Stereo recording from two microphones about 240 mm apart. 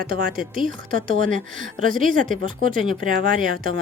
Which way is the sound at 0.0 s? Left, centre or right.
Right.